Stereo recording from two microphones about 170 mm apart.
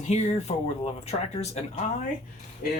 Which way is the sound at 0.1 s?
40° left (ahead or behind).